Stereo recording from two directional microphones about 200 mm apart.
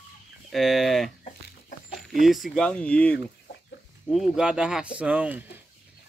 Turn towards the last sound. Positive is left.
turn(degrees=-5)  # may be behind; listen again after turning